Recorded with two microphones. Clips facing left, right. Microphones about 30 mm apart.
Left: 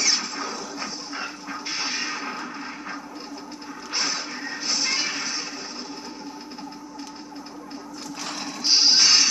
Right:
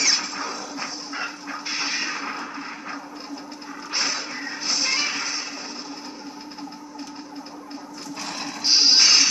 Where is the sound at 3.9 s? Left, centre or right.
Centre.